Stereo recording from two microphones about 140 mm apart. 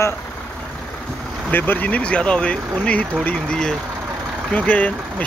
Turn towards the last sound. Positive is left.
turn(degrees=10)  # may be behind; listen again after turning